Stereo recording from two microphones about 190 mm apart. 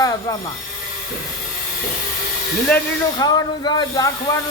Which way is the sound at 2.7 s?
5° left (ahead or behind).